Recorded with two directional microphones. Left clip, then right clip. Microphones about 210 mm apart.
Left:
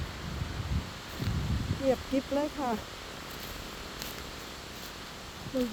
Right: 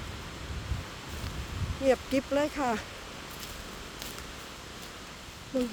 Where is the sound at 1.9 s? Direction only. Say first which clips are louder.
Right 3 dB; 30° right (ahead or behind).